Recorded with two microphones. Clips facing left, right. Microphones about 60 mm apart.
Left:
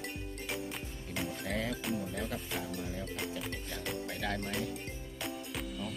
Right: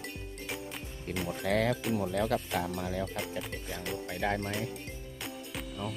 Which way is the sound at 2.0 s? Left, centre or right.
Right.